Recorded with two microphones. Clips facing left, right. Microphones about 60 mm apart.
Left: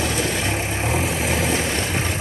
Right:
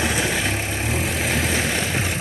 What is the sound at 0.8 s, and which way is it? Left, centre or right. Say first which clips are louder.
Vehicle: left 2 dB; centre.